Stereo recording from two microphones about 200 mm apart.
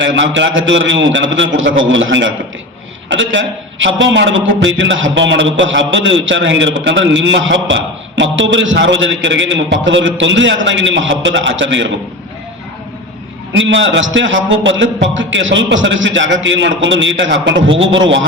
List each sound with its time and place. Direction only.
0.0 s a man's voice: 70° right (ahead or behind)
13.6 s a man's voice: 70° right (ahead or behind)